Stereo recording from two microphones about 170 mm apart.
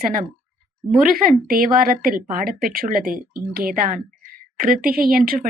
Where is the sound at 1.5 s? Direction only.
55° right (ahead or behind).